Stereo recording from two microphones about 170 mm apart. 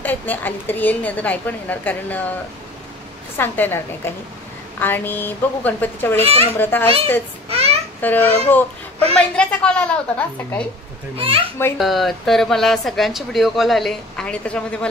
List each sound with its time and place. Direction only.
0.0 s a woman's voice: 10° left (ahead or behind)
3.3 s a woman's voice: 10° left (ahead or behind)
6.2 s a child's voice: 35° right (ahead or behind)
6.6 s a woman's voice: 10° left (ahead or behind)
7.4 s a sound: 35° right (ahead or behind)
8.0 s a woman's voice: 10° left (ahead or behind)
11.1 s a child's voice: 30° right (ahead or behind)
11.8 s speech: centre (ahead or behind)